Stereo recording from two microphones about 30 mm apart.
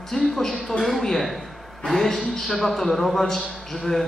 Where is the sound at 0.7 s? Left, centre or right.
Left.